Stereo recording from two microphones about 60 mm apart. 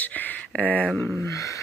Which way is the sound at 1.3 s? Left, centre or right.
Left.